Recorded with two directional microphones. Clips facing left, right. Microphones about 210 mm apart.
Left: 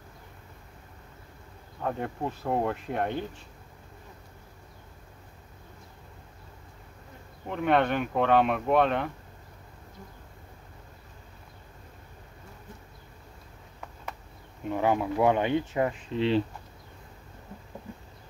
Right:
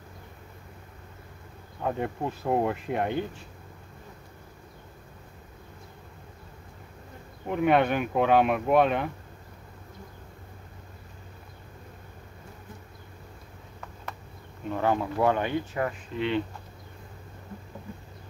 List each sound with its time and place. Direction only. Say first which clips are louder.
1.8 s speech: right 2 dB; 5° right (ahead or behind)
7.4 s speech: right 2 dB; 5° right (ahead or behind)
14.7 s speech: left 1 dB; 15° left (ahead or behind); by 16.4 s 30° left (ahead or behind)